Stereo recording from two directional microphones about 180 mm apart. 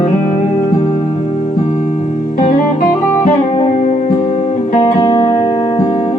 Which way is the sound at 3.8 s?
40° left (ahead or behind).